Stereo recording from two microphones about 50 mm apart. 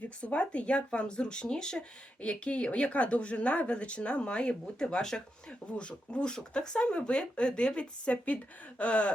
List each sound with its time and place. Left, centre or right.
0.2 s speech: left